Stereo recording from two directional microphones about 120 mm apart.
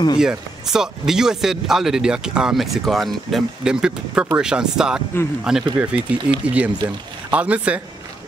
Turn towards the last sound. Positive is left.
turn(degrees=-10)  # may be behind; listen again after turning